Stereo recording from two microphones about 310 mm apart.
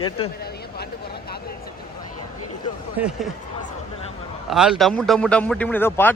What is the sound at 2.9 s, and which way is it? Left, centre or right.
Speech, centre.